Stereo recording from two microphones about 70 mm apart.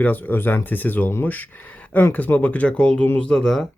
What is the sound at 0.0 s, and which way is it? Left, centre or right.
Speech, left.